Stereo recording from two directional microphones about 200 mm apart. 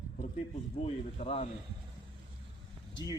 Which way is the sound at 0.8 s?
30° left (ahead or behind).